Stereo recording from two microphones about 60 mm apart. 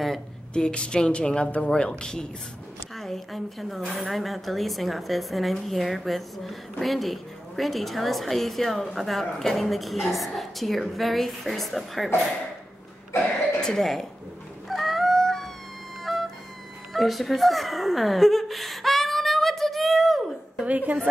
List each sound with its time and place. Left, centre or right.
0.5 s a woman's voice: centre
13.6 s speech: centre
14.7 s a sound: centre
16.0 s music: centre
16.9 s a sound: centre
20.6 s a woman's voice: right